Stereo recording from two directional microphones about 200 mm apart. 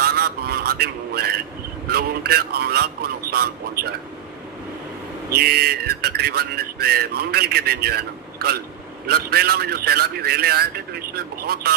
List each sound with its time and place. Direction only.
0.0 s a sound: 50° right (ahead or behind)
1.9 s speech: 50° right (ahead or behind)
5.3 s speech: 50° right (ahead or behind)